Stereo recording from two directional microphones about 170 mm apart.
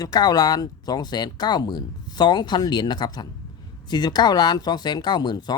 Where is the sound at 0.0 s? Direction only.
25° left (ahead or behind).